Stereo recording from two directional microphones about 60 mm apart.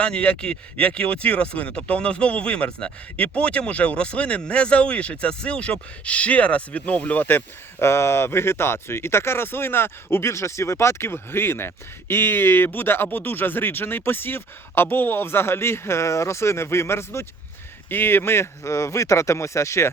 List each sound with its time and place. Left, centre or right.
0.0 s speech: centre
7.9 s speech: left